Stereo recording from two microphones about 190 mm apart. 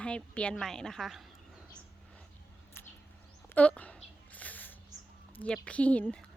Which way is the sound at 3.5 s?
5° left (ahead or behind).